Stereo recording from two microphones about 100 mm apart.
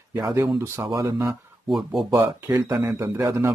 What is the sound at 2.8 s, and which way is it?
Speech, 25° right (ahead or behind).